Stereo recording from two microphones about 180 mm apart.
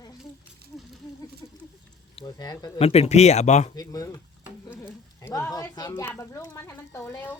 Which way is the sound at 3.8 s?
20° left (ahead or behind).